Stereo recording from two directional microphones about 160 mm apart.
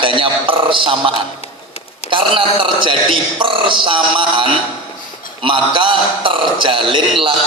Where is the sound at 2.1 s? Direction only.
30° right (ahead or behind).